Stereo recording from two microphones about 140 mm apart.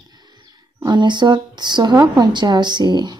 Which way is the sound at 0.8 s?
35° right (ahead or behind).